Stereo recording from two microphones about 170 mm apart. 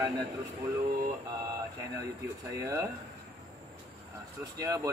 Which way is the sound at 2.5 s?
15° right (ahead or behind).